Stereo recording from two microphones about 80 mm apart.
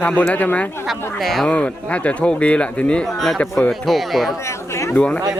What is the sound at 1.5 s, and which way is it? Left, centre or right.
Speech, centre.